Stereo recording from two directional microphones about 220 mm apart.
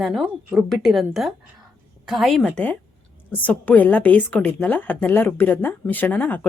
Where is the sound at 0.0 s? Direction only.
Centre (ahead or behind).